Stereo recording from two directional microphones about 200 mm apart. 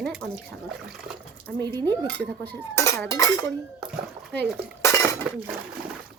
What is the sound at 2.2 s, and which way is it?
Speech, 10° left (ahead or behind).